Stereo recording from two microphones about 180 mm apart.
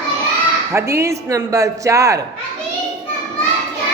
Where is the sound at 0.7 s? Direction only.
15° right (ahead or behind).